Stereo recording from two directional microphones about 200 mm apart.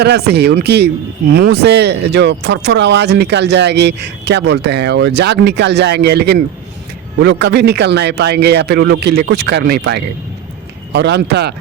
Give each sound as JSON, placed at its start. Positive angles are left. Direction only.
{"t": 0.0, "sound": "speech", "side_deg": -55}